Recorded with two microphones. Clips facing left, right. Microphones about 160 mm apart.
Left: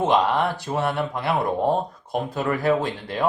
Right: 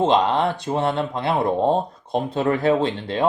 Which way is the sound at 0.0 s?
20° right (ahead or behind).